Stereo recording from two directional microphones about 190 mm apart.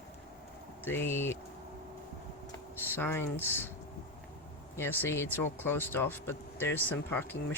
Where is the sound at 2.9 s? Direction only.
10° left (ahead or behind).